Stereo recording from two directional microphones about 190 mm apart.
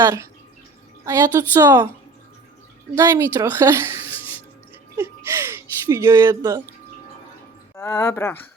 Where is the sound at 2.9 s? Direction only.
15° right (ahead or behind).